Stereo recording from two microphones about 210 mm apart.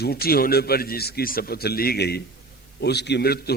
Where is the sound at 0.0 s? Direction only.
45° left (ahead or behind).